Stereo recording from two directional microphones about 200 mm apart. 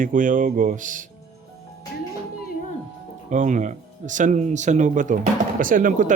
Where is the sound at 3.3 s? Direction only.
40° right (ahead or behind).